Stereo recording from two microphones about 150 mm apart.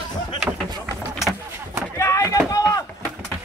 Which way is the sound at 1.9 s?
20° left (ahead or behind).